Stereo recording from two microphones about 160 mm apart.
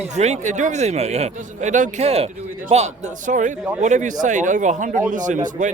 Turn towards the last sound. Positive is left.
turn(degrees=-55)  # may be behind; listen again after turning